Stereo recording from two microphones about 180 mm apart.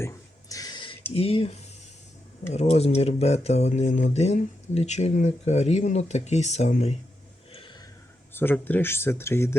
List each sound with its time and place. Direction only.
0.0 s a sound: 20° left (ahead or behind)
1.1 s speech: 35° left (ahead or behind)
8.3 s speech: 10° left (ahead or behind)